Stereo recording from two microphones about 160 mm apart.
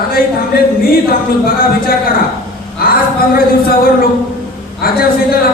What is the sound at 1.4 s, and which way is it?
Speech, 70° left (ahead or behind).